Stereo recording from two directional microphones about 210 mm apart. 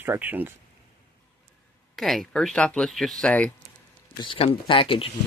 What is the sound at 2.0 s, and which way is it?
Speech, centre (ahead or behind).